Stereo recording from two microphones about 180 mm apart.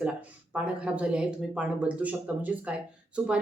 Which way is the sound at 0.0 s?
5° right (ahead or behind).